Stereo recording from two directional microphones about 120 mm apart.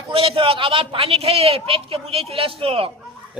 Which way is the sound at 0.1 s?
50° right (ahead or behind).